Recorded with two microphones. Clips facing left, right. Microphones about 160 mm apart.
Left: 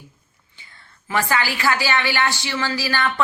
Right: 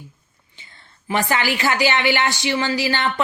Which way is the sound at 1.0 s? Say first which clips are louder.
Right 1 dB; 20° right (ahead or behind).